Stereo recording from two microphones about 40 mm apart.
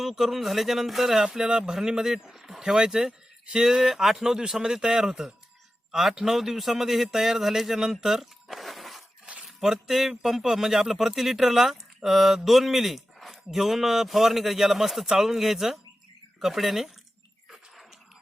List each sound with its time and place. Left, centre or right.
0.0 s a man's voice: centre
9.2 s a sound: right
9.6 s speech: centre